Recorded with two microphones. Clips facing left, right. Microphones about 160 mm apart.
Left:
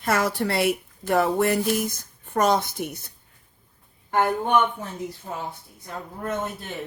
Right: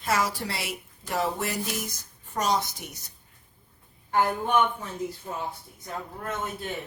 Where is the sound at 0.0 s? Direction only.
55° left (ahead or behind).